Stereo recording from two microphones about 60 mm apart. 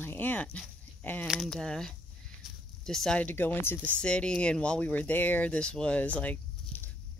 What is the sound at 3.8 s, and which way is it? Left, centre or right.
Speech, left.